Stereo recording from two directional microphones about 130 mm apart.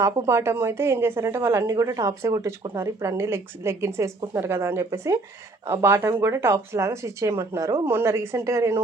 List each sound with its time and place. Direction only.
0.0 s speech: 20° right (ahead or behind)